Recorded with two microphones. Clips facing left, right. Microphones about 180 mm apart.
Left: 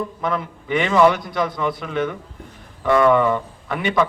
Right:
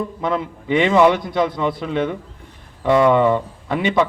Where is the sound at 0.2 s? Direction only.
25° right (ahead or behind).